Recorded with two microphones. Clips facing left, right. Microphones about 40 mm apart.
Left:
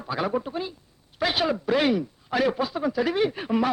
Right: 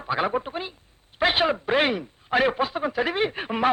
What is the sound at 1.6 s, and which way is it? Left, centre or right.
A man's voice, right.